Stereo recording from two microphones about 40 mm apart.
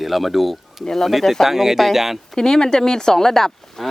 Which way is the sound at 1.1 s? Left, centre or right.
Centre.